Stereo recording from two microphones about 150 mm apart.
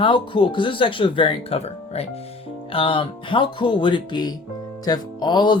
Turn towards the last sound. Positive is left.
turn(degrees=30)  # may be behind; listen again after turning